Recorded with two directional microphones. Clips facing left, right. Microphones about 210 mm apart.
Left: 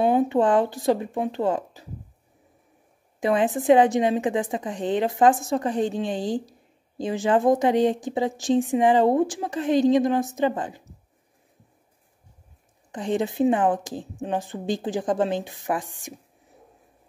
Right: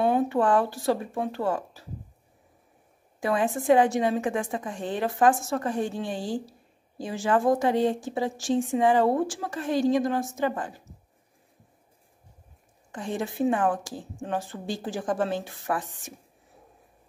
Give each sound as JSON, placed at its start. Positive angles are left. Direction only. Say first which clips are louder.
{"t": 0.0, "sound": "speech", "louder": "left 3 dB", "side_deg": 20}
{"t": 3.2, "sound": "speech", "louder": "left 4 dB", "side_deg": 20}
{"t": 12.9, "sound": "speech", "louder": "left 6 dB", "side_deg": 20}